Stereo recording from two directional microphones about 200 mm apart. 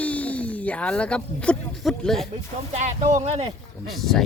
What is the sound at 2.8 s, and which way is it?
Speech, 35° right (ahead or behind).